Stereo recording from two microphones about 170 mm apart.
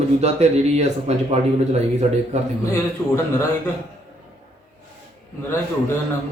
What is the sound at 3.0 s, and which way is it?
Speech, 15° left (ahead or behind).